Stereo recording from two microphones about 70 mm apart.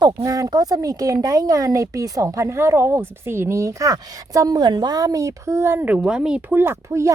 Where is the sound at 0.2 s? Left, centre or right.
Right.